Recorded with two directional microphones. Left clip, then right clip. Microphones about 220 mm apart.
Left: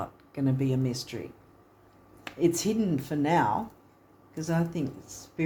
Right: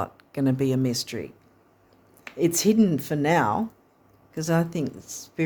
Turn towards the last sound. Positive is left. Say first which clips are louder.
# right 4 dB
turn(degrees=-50)  # may be behind; listen again after turning